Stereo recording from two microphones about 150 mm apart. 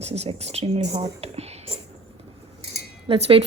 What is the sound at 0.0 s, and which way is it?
A woman's voice, 45° right (ahead or behind).